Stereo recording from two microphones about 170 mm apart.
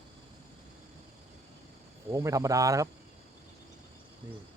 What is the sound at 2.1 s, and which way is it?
Speech, 20° right (ahead or behind).